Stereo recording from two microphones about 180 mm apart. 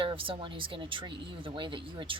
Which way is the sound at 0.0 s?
30° right (ahead or behind).